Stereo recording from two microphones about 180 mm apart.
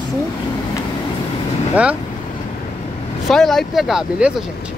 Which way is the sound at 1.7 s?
10° right (ahead or behind).